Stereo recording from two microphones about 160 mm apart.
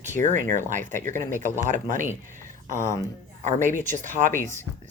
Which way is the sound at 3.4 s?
50° right (ahead or behind).